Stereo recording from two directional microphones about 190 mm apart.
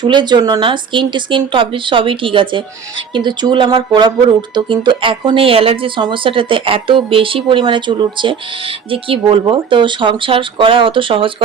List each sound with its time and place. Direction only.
0.0 s speech: 25° right (ahead or behind)